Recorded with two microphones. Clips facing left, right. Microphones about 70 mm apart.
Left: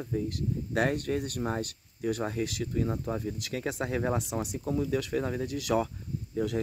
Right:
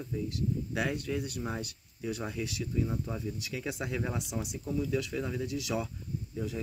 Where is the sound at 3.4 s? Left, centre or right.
Left.